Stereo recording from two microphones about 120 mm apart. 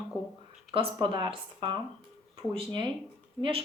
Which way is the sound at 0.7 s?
45° right (ahead or behind).